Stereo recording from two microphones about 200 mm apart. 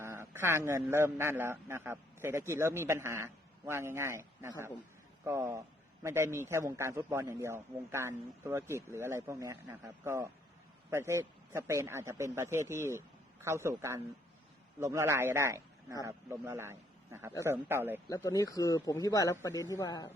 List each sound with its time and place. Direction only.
0.0 s a sound: 10° right (ahead or behind)
0.9 s a man's voice: 10° right (ahead or behind)
18.1 s speech: 15° left (ahead or behind)